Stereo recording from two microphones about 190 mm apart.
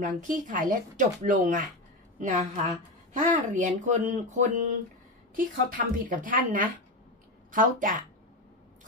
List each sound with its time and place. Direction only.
0.0 s speech: 45° right (ahead or behind)